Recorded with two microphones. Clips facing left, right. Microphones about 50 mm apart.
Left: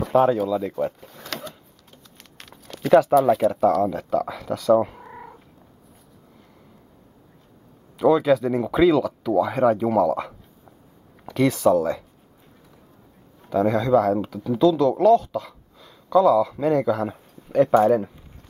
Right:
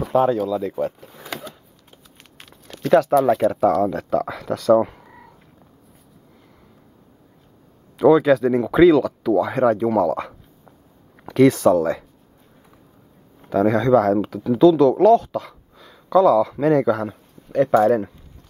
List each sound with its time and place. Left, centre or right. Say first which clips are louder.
0.0 s a sound: even; centre
2.5 s speech: even; centre
8.0 s speech: right 4 dB; centre
13.5 s speech: right 3 dB; centre
17.1 s a sound: left 1 dB; centre
17.8 s speech: right 1 dB; centre